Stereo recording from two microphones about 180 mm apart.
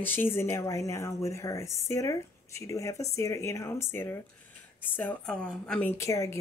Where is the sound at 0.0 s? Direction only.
10° left (ahead or behind).